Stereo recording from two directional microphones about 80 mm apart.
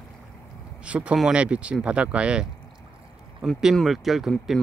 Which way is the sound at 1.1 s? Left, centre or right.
Centre.